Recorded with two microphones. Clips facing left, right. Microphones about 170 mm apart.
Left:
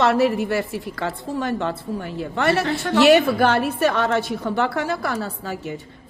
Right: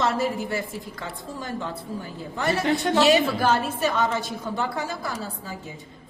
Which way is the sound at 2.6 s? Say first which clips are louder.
Even; 20° right (ahead or behind).